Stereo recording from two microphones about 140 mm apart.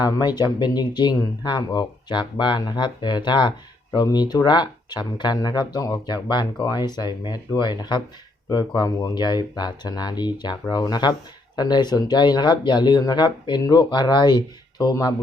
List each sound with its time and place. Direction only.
0.0 s speech: 30° left (ahead or behind)